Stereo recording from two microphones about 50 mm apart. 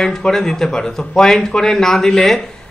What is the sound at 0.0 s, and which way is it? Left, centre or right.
A man's voice, centre.